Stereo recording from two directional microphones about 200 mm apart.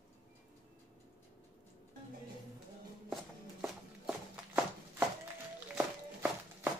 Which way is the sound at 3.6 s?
5° right (ahead or behind).